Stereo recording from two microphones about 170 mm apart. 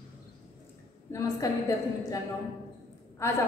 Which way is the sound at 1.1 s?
20° left (ahead or behind).